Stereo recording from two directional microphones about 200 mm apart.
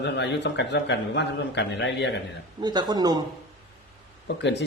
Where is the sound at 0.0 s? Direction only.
60° left (ahead or behind).